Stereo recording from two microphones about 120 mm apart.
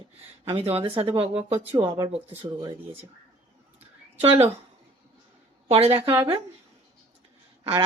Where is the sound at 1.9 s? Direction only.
40° right (ahead or behind).